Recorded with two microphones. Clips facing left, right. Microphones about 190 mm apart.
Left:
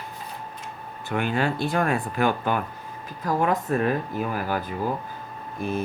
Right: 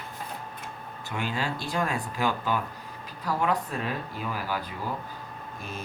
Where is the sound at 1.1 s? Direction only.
55° left (ahead or behind).